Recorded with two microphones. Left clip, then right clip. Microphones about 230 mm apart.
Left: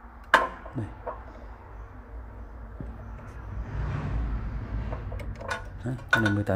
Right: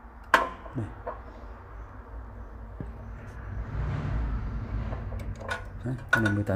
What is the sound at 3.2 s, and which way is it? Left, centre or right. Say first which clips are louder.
Vehicle: right 2 dB; centre.